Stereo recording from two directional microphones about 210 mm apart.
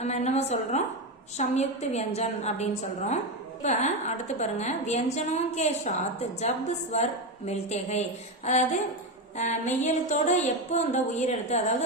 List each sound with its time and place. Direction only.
0.0 s a woman's voice: 30° left (ahead or behind)